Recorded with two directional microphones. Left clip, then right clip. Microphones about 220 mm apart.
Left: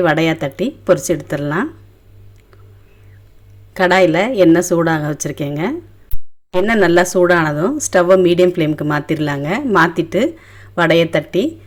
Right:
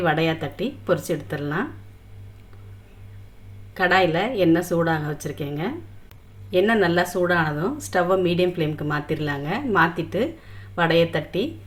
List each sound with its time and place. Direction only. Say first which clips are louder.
0.0 s a woman's voice: left 7 dB; 40° left (ahead or behind)
3.8 s a woman's voice: left 7 dB; 40° left (ahead or behind)